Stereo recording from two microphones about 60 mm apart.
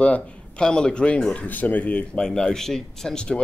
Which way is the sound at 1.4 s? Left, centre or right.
Left.